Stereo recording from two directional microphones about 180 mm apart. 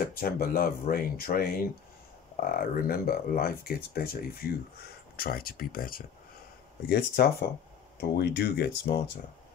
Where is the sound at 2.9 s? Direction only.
55° left (ahead or behind).